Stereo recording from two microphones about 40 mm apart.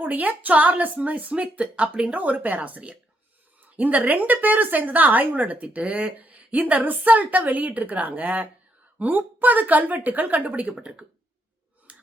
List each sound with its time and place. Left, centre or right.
0.0 s a woman's voice: right
2.1 s a woman's voice: right
10.7 s speech: right